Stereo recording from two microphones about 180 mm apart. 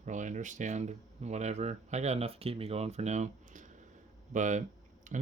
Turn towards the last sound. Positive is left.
turn(degrees=-45)  # may be behind; listen again after turning